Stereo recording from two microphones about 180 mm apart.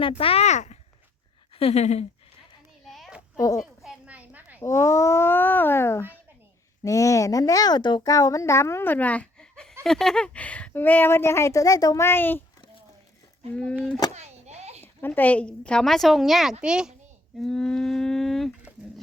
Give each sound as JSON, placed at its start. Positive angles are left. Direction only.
{"t": 0.0, "sound": "speech", "side_deg": 30}
{"t": 2.8, "sound": "a sound", "side_deg": 0}
{"t": 3.3, "sound": "speech", "side_deg": 20}
{"t": 3.8, "sound": "a sound", "side_deg": -5}
{"t": 4.6, "sound": "speech", "side_deg": 15}
{"t": 13.5, "sound": "speech", "side_deg": 5}
{"t": 14.1, "sound": "a sound", "side_deg": -40}
{"t": 15.0, "sound": "a woman's voice", "side_deg": 10}
{"t": 17.4, "sound": "livestock", "side_deg": 5}